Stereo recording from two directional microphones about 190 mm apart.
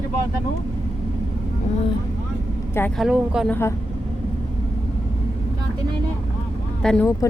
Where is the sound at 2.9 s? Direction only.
5° right (ahead or behind).